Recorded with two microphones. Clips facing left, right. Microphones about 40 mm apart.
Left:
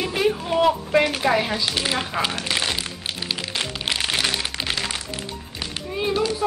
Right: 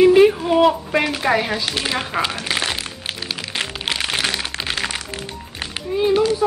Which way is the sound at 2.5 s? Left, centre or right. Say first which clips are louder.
Right 3 dB; centre.